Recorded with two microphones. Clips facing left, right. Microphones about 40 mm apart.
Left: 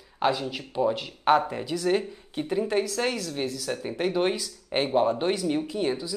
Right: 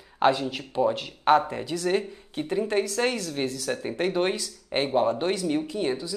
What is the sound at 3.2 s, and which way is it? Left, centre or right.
Speech, centre.